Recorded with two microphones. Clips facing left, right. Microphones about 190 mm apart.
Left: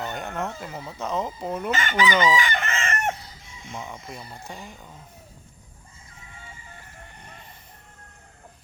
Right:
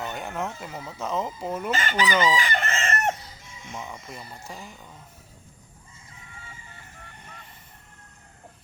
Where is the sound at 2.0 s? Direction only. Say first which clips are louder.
Left 2 dB; centre (ahead or behind).